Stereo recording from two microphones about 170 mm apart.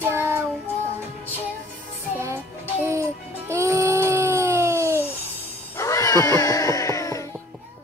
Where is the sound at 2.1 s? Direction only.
15° right (ahead or behind).